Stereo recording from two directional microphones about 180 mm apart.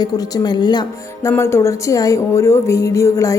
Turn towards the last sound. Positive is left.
turn(degrees=15)  # may be behind; listen again after turning